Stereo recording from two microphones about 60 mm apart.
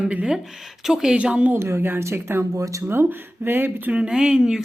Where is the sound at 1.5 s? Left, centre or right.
Right.